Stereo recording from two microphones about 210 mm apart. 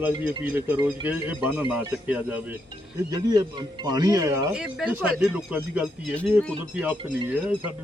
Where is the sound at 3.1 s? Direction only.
20° right (ahead or behind).